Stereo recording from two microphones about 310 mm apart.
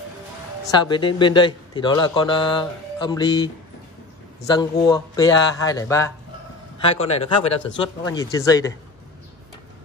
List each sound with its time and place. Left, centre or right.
0.7 s speech: centre
4.6 s a man's voice: centre